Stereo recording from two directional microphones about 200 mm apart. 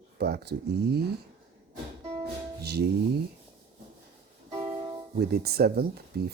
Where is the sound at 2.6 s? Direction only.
55° right (ahead or behind).